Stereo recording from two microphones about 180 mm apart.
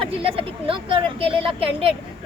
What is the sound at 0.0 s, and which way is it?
A woman's voice, 30° right (ahead or behind).